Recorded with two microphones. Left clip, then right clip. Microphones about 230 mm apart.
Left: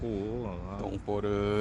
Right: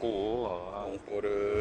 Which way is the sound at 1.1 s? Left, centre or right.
Left.